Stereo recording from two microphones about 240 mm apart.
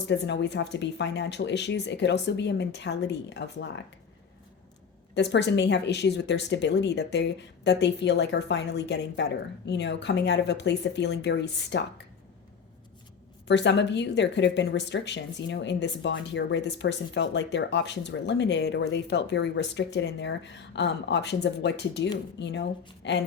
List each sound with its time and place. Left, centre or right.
0.0 s speech: left
5.1 s speech: left
13.5 s speech: left